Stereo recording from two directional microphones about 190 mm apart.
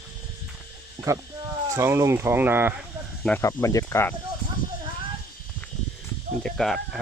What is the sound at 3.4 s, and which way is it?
Speech, 15° left (ahead or behind).